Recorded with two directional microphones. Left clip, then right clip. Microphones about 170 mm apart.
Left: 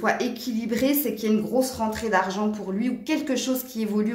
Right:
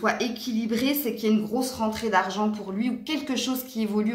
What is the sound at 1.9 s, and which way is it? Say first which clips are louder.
A woman's voice: left 1 dB; 40° left (ahead or behind).